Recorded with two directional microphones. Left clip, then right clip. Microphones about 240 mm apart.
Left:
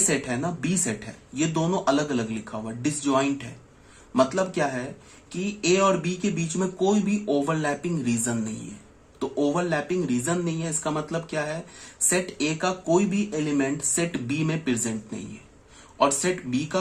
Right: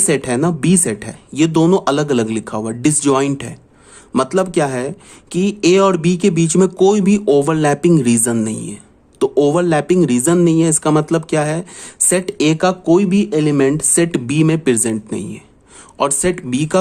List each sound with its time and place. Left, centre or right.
0.1 s speech: right